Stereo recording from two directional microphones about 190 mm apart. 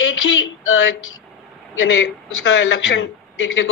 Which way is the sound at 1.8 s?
90° left.